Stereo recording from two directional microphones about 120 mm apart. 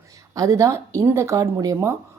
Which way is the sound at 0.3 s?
25° right (ahead or behind).